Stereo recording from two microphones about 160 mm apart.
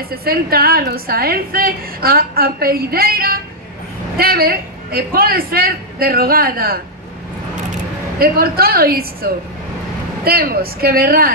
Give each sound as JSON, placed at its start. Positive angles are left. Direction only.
{"t": 0.1, "sound": "a woman's voice", "side_deg": -70}
{"t": 8.2, "sound": "a woman's voice", "side_deg": -70}